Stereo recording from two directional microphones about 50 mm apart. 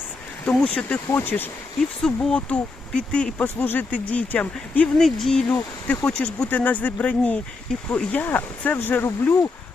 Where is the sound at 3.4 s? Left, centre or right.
Left.